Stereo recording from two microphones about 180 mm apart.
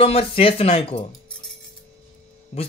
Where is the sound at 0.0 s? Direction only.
35° left (ahead or behind).